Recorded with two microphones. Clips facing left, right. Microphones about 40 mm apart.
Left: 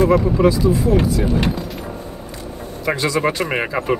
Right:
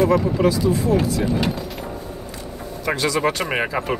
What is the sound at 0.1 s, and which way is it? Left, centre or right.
Speech, centre.